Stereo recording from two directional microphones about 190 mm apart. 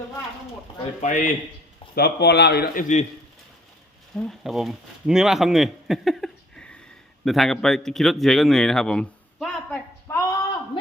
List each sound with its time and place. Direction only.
1.0 s speech: 40° left (ahead or behind)
2.0 s speech: 60° left (ahead or behind)
2.8 s speech: 40° left (ahead or behind)
4.1 s speech: centre (ahead or behind)